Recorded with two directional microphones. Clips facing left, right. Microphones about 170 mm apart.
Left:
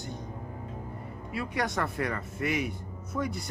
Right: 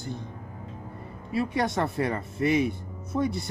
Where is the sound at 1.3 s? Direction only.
25° right (ahead or behind).